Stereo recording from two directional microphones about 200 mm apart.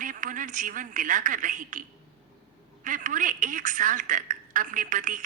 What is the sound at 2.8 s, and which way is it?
A woman's voice, 40° right (ahead or behind).